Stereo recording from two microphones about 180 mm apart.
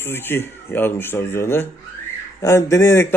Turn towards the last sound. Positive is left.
turn(degrees=15)  # may be behind; listen again after turning